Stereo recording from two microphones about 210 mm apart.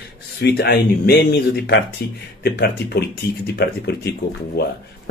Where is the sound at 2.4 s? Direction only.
50° left (ahead or behind).